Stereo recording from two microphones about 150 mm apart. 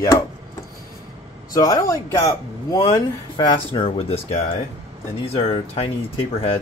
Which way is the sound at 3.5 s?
35° left (ahead or behind).